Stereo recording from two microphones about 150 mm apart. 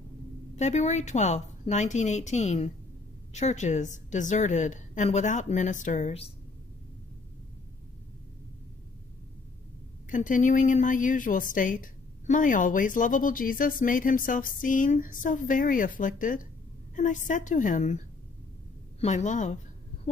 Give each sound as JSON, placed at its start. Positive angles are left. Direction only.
{"t": 0.6, "sound": "a woman's voice", "side_deg": 50}
{"t": 10.0, "sound": "a woman's voice", "side_deg": 60}